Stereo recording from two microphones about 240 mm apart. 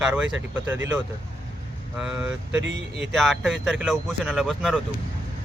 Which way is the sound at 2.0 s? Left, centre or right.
Centre.